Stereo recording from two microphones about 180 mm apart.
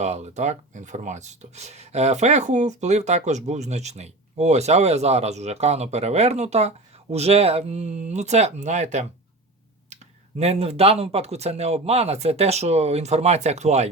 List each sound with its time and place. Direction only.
0.0 s speech: 40° right (ahead or behind)